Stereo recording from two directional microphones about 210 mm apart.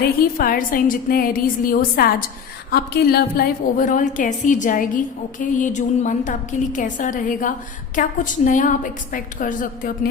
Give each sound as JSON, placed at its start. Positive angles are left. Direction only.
{"t": 0.0, "sound": "a woman's voice", "side_deg": 45}